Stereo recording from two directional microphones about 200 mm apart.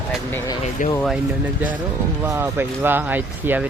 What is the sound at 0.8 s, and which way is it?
Speech, 40° left (ahead or behind).